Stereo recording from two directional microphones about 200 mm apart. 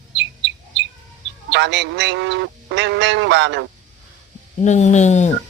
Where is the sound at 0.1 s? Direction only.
60° right (ahead or behind).